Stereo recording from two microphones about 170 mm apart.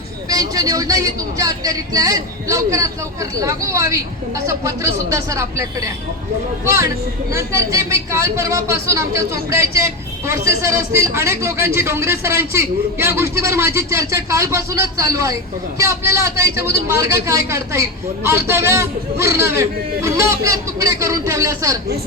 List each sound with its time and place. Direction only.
0.3 s speech: 20° right (ahead or behind)